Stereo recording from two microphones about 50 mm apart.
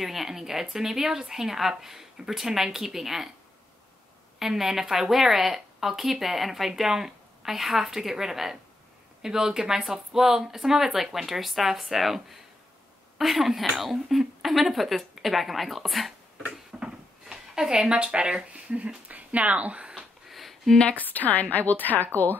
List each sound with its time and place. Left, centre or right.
0.0 s a woman's voice: centre
4.4 s a woman's voice: centre
16.8 s speech: centre
20.2 s a sound: centre
20.9 s a woman's voice: left